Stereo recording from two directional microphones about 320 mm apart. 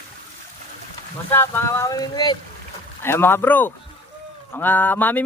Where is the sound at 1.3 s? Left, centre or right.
Centre.